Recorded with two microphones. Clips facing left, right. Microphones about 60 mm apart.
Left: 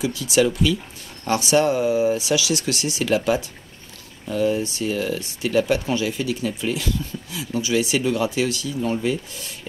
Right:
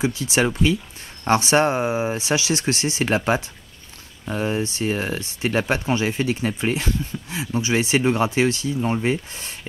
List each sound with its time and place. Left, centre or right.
0.0 s speech: right